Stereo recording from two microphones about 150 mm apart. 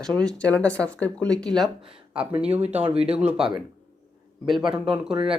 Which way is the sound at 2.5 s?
45° right (ahead or behind).